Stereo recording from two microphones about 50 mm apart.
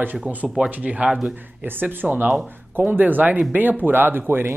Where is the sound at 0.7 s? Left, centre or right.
Right.